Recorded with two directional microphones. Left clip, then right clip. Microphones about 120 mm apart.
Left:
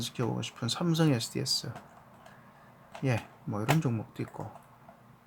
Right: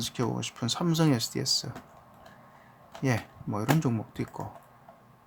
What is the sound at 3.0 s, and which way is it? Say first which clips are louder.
Speech: right 3 dB; 25° right (ahead or behind).